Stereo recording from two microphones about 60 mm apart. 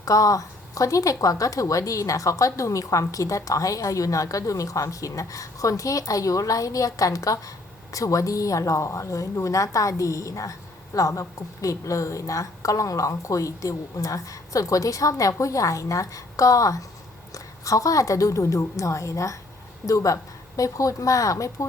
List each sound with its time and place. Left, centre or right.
0.0 s a woman's voice: left